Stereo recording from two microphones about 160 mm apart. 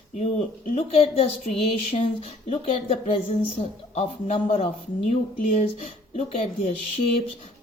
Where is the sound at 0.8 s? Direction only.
40° left (ahead or behind).